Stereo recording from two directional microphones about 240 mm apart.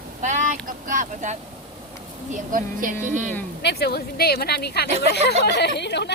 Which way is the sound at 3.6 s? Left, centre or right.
Left.